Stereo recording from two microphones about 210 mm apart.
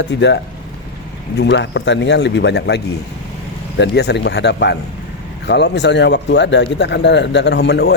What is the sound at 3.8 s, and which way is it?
Speech, 55° left (ahead or behind).